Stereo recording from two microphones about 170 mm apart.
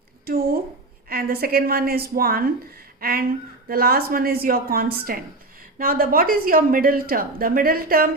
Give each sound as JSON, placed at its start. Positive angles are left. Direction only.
{"t": 0.3, "sound": "a woman's voice", "side_deg": -60}